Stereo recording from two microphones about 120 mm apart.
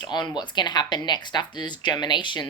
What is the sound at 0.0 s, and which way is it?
Speech, 40° left (ahead or behind).